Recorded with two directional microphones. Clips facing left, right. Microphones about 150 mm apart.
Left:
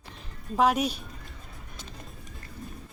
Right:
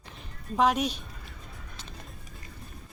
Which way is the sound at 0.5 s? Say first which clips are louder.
Left 1 dB; 10° left (ahead or behind).